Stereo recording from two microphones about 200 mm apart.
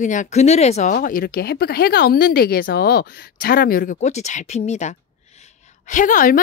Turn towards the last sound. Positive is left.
turn(degrees=40)  # may be behind; listen again after turning